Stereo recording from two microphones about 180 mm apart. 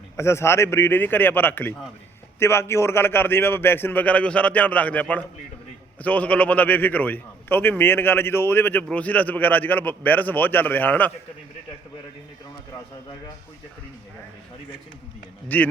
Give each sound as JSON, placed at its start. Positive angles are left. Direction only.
{"t": 0.2, "sound": "a man's voice", "side_deg": 15}
{"t": 15.5, "sound": "a man's voice", "side_deg": 10}